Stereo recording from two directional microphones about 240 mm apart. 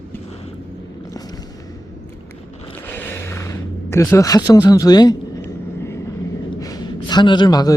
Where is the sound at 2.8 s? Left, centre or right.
Centre.